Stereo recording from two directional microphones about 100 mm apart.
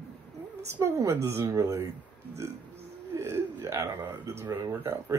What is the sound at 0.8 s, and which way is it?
Speech, 30° right (ahead or behind).